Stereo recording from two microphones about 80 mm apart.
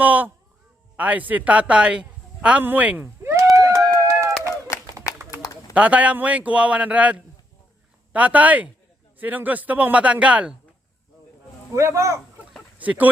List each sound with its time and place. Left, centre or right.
0.0 s a man's voice: right
3.0 s a sound: right
3.4 s run: right
5.4 s a sound: left
5.7 s a man's voice: centre
11.7 s speech: right
12.8 s speech: centre